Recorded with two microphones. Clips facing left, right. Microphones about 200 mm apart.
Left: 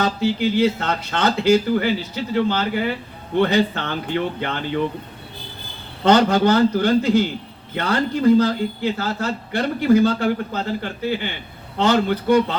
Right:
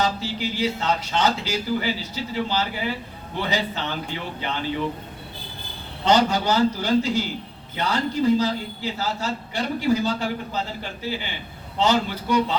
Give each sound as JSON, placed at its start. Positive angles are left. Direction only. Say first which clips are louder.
{"t": 0.0, "sound": "a man's voice", "louder": "left 6 dB", "side_deg": 55}
{"t": 6.1, "sound": "a man's voice", "louder": "left 5 dB", "side_deg": 55}